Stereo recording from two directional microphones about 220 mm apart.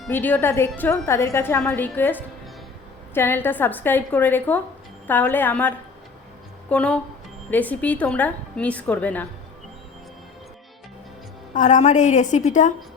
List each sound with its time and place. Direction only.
0.0 s a woman's voice: 10° left (ahead or behind)
11.5 s a woman's voice: 35° left (ahead or behind)